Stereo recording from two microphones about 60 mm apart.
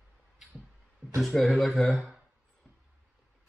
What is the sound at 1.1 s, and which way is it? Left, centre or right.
Speech, centre.